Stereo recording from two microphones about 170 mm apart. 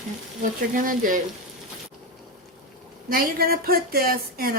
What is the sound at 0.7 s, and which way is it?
Speech, 55° right (ahead or behind).